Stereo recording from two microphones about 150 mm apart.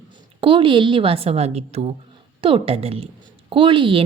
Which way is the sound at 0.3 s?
35° right (ahead or behind).